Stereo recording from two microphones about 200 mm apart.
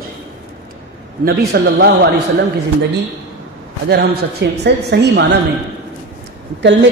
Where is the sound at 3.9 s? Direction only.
55° right (ahead or behind).